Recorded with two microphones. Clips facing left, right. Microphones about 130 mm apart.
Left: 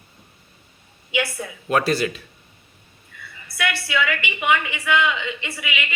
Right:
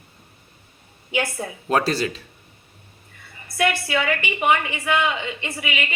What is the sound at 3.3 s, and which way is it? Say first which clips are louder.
A woman's voice: right 5 dB; 40° right (ahead or behind).